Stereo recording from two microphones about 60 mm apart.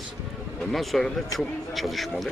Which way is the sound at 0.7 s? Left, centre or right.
Centre.